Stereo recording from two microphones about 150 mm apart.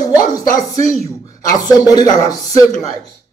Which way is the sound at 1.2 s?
20° left (ahead or behind).